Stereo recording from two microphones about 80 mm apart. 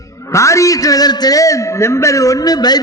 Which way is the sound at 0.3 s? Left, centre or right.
Left.